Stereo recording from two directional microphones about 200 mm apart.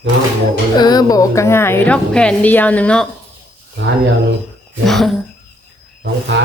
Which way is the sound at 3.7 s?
60° right (ahead or behind).